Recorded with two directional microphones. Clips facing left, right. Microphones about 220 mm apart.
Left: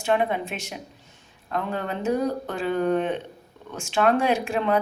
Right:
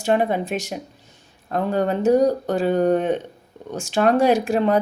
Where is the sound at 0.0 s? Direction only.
40° right (ahead or behind).